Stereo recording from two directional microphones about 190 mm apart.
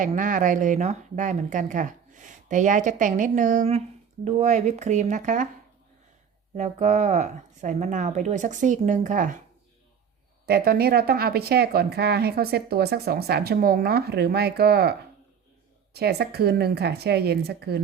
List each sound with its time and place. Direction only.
0.0 s speech: 45° right (ahead or behind)
6.6 s speech: 35° right (ahead or behind)
10.4 s speech: 55° right (ahead or behind)